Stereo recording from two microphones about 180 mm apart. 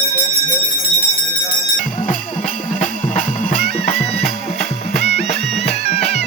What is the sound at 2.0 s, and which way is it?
Music, 50° left (ahead or behind).